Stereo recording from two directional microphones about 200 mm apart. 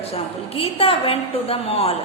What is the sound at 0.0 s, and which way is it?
A woman's voice, 30° left (ahead or behind).